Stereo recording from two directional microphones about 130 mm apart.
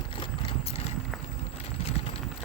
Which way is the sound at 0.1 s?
45° left (ahead or behind).